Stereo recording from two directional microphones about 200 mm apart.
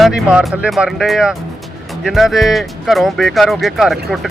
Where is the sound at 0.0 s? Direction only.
5° right (ahead or behind).